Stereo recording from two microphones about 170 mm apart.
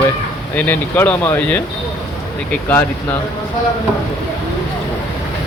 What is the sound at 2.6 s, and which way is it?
Speech, 10° left (ahead or behind).